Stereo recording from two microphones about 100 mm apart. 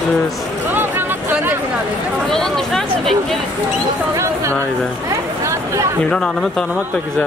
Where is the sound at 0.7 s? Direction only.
20° right (ahead or behind).